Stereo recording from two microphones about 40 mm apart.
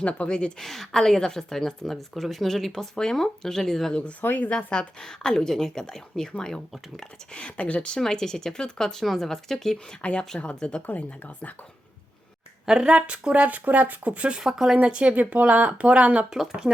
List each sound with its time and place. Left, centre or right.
0.0 s speech: left
0.6 s a woman's voice: centre
4.5 s a woman's voice: centre
7.3 s speech: left
8.0 s a woman's voice: centre
9.7 s speech: left
12.6 s speech: centre
13.4 s speech: right
14.4 s speech: centre
14.8 s speech: right
15.1 s speech: right
16.3 s speech: centre